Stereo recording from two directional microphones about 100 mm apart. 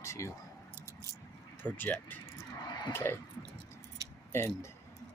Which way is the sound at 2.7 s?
45° left (ahead or behind).